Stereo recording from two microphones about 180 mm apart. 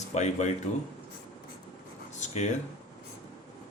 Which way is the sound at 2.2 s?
40° left (ahead or behind).